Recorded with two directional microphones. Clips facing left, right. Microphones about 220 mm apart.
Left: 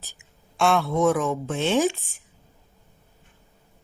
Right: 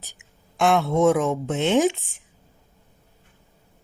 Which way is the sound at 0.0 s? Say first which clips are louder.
Right 1 dB; 15° right (ahead or behind).